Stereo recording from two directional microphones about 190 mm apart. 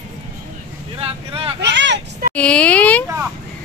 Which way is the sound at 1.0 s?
30° right (ahead or behind).